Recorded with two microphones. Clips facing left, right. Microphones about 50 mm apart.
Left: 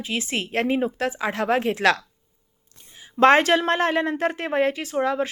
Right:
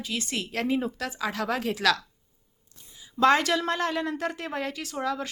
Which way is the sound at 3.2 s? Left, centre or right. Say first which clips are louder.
Left 6 dB; left.